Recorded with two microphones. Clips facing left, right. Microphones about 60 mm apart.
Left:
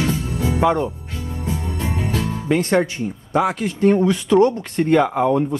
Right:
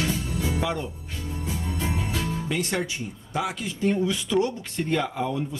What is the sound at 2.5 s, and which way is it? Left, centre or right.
Speech, left.